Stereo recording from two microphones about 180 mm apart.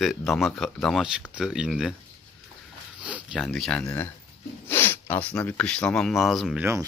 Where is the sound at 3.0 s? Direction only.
5° right (ahead or behind).